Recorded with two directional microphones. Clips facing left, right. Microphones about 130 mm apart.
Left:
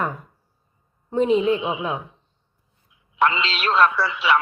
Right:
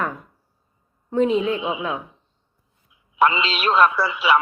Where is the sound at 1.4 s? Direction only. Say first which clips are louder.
Left 2 dB; 25° left (ahead or behind).